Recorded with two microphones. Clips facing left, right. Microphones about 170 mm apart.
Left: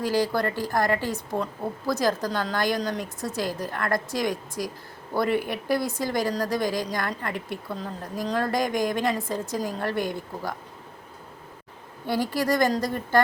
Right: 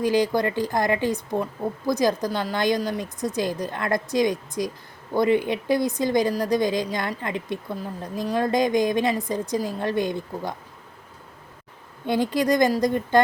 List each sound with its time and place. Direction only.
0.0 s a woman's voice: 20° right (ahead or behind)
12.0 s a woman's voice: 20° right (ahead or behind)